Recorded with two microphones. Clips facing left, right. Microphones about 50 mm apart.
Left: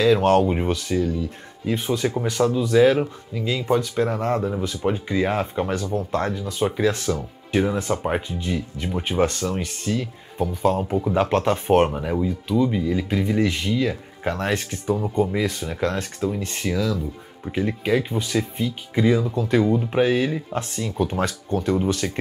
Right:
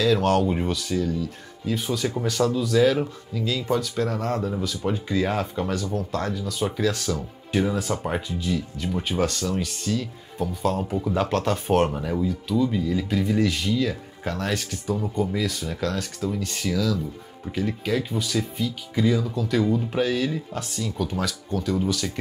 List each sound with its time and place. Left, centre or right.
0.0 s speech: left